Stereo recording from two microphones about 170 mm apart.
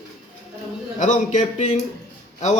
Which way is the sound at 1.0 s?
45° left (ahead or behind).